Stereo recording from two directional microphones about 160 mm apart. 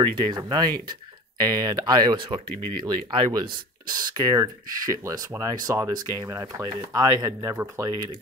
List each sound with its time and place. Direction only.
0.0 s speech: 30° right (ahead or behind)